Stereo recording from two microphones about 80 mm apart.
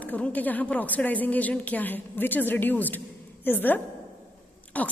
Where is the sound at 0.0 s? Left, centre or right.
Centre.